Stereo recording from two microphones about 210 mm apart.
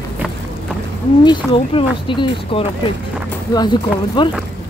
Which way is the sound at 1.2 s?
25° left (ahead or behind).